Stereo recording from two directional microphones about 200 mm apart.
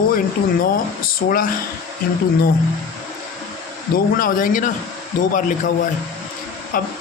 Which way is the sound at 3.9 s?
45° left (ahead or behind).